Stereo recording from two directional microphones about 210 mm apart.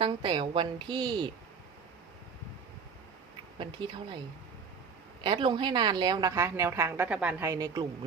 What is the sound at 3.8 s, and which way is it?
Speech, 20° right (ahead or behind).